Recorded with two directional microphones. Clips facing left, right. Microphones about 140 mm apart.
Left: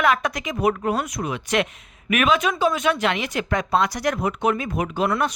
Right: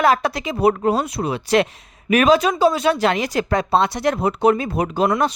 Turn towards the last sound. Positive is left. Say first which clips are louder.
# right 4 dB
turn(degrees=-25)  # may be behind; listen again after turning